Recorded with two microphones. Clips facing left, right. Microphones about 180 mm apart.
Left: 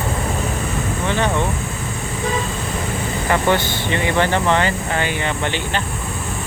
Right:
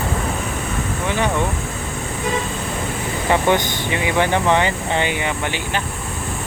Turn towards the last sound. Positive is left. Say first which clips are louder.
# left 1 dB
turn(degrees=-10)  # may be behind; listen again after turning